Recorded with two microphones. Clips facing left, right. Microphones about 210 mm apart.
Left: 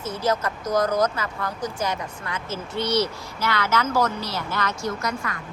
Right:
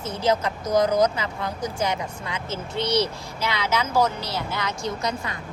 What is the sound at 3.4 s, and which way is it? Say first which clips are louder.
A woman's voice: left 1 dB; 15° right (ahead or behind).